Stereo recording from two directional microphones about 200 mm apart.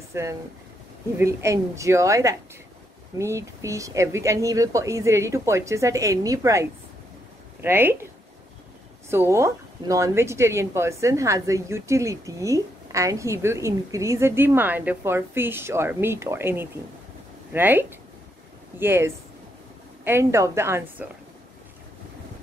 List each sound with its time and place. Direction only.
0.1 s speech: 15° right (ahead or behind)
9.1 s speech: 10° right (ahead or behind)